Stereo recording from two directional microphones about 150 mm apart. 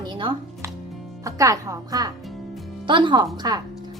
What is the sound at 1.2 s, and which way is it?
A woman's voice, 20° right (ahead or behind).